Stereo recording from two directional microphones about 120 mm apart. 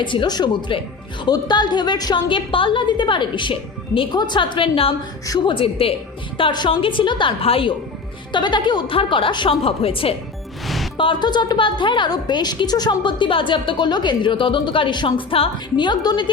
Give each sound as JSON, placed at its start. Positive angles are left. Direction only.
{"t": 0.0, "sound": "a woman's voice", "side_deg": 40}